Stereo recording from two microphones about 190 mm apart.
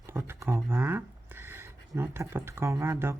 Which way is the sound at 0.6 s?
10° right (ahead or behind).